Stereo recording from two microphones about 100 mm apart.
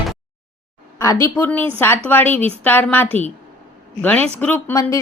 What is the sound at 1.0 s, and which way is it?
Speech, 30° left (ahead or behind).